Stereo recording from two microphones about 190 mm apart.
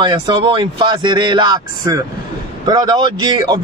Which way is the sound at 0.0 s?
25° right (ahead or behind).